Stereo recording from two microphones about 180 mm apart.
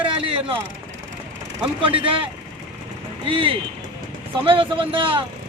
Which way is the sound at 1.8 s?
30° right (ahead or behind).